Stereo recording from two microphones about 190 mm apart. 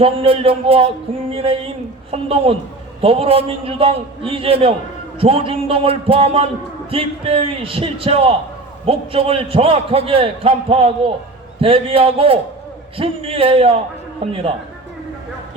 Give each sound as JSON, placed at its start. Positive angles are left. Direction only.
{"t": 0.0, "sound": "a man's voice", "side_deg": -30}